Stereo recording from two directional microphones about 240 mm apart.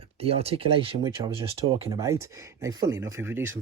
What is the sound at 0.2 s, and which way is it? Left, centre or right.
Speech, right.